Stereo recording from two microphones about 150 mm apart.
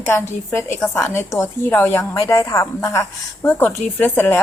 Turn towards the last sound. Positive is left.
turn(degrees=15)  # may be behind; listen again after turning